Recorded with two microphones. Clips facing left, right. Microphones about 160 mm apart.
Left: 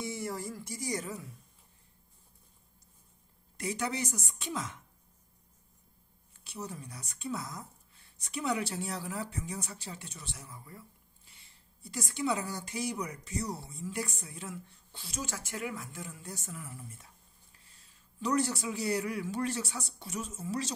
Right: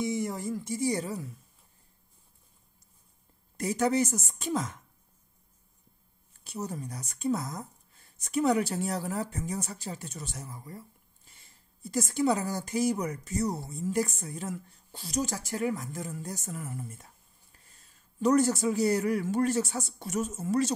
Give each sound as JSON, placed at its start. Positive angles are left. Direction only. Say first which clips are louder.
{"t": 0.0, "sound": "speech", "louder": "right 6 dB", "side_deg": -20}
{"t": 3.5, "sound": "speech", "louder": "right 8 dB", "side_deg": -45}
{"t": 6.4, "sound": "speech", "louder": "right 6 dB", "side_deg": -45}